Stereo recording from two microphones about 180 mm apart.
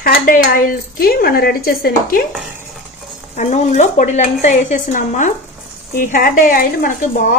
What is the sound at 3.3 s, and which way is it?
Speech, 40° left (ahead or behind).